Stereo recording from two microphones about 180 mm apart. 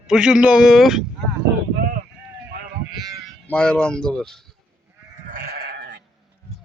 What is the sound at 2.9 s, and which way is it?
Sheep, 20° right (ahead or behind).